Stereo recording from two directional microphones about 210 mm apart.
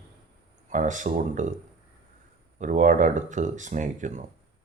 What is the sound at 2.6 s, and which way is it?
Speech, 35° right (ahead or behind).